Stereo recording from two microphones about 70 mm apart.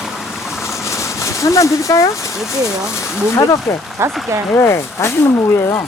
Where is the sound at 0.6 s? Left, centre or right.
Left.